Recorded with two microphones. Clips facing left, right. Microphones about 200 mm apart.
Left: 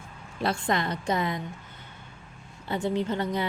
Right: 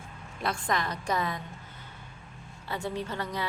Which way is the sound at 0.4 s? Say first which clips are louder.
Left 4 dB; 25° left (ahead or behind).